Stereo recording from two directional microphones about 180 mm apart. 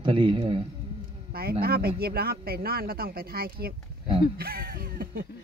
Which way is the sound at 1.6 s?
60° right (ahead or behind).